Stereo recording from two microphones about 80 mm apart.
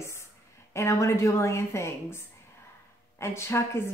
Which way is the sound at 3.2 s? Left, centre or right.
Left.